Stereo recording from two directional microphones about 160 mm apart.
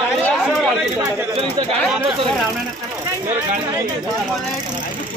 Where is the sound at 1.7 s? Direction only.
5° right (ahead or behind).